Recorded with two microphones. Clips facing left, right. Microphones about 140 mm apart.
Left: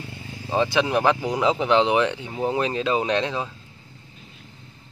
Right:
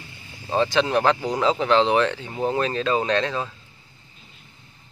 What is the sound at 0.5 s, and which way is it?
Speech, 10° left (ahead or behind).